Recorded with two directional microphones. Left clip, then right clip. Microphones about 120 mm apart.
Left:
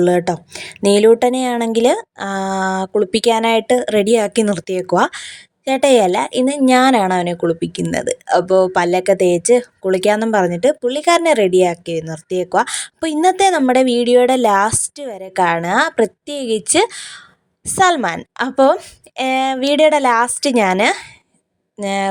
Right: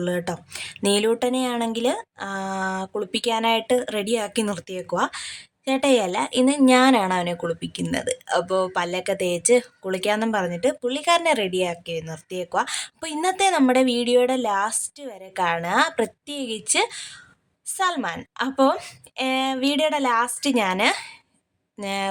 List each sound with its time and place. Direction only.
0.0 s speech: 50° left (ahead or behind)
0.3 s speech: 30° left (ahead or behind); by 5.1 s 55° left (ahead or behind)
5.1 s speech: 35° left (ahead or behind)
14.3 s speech: 60° left (ahead or behind)
17.7 s a woman's voice: 60° left (ahead or behind)
18.3 s speech: 45° left (ahead or behind)